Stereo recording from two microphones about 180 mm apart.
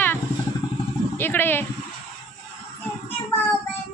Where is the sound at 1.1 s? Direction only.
10° left (ahead or behind).